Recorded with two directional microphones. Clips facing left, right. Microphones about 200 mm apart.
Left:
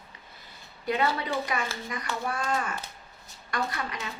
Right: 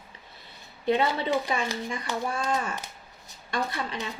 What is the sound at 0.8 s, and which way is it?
Speech, 20° right (ahead or behind).